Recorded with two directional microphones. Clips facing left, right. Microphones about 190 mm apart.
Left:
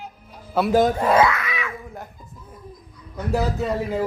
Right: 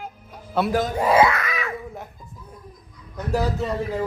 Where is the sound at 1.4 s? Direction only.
40° right (ahead or behind).